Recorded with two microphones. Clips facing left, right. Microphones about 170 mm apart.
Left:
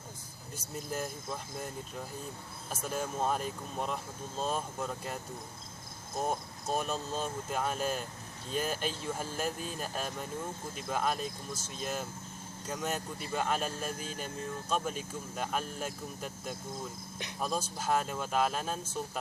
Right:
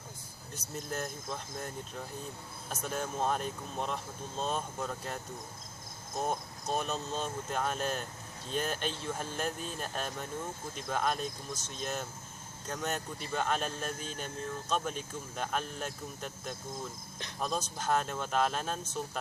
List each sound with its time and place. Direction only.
0.5 s speech: 5° left (ahead or behind)